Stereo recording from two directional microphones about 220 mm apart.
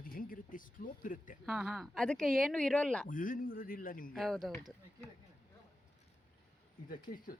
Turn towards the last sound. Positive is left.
turn(degrees=35)  # may be behind; listen again after turning